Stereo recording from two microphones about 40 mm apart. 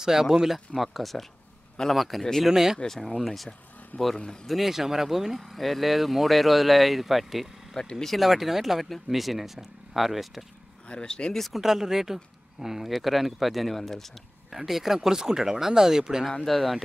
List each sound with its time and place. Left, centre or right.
0.0 s speech: centre
2.4 s speech: centre
2.9 s speech: centre
3.9 s speech: left
4.5 s speech: centre
7.7 s speech: centre
8.1 s speech: centre
10.9 s speech: left
11.3 s speech: centre
11.6 s speech: centre
14.7 s speech: centre
16.4 s speech: centre